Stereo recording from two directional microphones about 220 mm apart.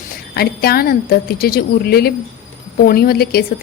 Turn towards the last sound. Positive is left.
turn(degrees=45)  # may be behind; listen again after turning